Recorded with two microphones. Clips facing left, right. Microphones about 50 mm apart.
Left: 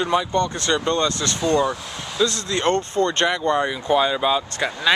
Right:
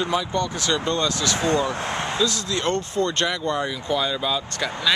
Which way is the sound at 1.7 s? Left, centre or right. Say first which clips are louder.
Right 4 dB; right.